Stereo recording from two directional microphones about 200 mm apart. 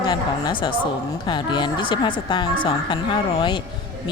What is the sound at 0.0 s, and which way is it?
A woman's voice, 20° left (ahead or behind).